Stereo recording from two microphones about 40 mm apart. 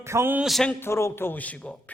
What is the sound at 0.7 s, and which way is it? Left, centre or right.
Speech, left.